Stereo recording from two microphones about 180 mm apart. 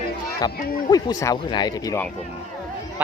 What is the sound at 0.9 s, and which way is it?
Speech, 20° left (ahead or behind).